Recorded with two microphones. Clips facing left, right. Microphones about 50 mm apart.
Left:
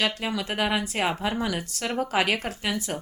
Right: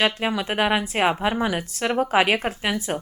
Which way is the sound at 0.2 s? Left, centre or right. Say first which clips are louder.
Right 4 dB; right.